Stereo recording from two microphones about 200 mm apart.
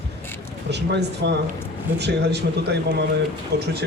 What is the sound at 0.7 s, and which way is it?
Speech, 60° right (ahead or behind).